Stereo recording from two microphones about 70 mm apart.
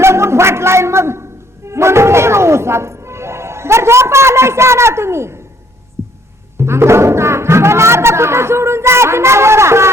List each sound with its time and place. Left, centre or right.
0.0 s a sound: right
6.0 s heart sounds: right
6.6 s speech: right